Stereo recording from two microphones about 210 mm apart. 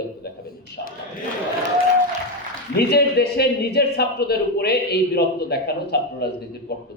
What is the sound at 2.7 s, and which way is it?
A man's voice, 50° left (ahead or behind).